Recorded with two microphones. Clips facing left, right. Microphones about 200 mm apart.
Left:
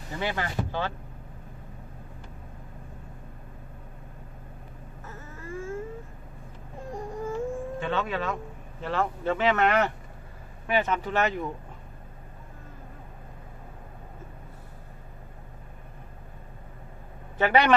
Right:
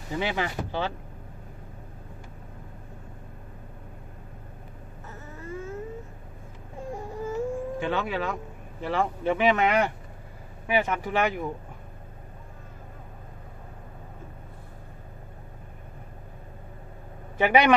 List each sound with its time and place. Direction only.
0.2 s speech: 15° right (ahead or behind)
5.1 s a sound: 20° right (ahead or behind)
7.0 s baby cry: 10° right (ahead or behind)
8.8 s speech: 10° right (ahead or behind)
17.4 s speech: 15° right (ahead or behind)